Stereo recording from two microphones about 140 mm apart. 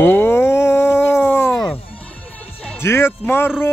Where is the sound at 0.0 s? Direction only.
15° left (ahead or behind).